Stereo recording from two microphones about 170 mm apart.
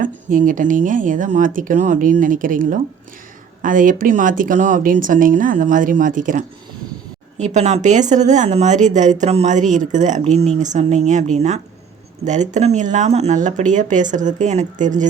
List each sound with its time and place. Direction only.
0.0 s speech: 50° right (ahead or behind)